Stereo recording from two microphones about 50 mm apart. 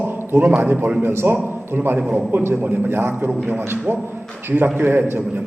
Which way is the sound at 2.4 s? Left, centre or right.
Right.